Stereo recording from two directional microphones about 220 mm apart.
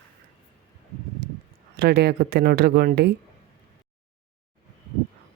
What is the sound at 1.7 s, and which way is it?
Speech, 50° right (ahead or behind).